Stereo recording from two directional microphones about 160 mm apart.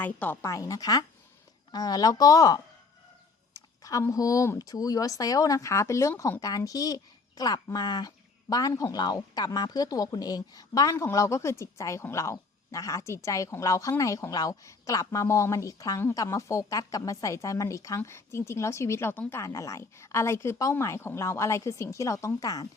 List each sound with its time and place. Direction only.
0.0 s speech: 10° left (ahead or behind)